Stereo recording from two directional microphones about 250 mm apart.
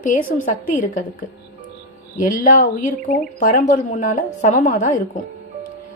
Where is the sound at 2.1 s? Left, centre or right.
Left.